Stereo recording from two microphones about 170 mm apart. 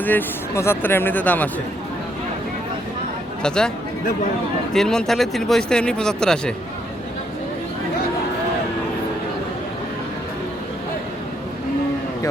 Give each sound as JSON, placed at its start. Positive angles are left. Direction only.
{"t": 0.0, "sound": "speech", "side_deg": 10}
{"t": 3.4, "sound": "speech", "side_deg": 5}
{"t": 4.7, "sound": "speech", "side_deg": 5}